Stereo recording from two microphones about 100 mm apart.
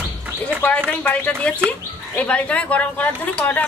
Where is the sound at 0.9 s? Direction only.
15° left (ahead or behind).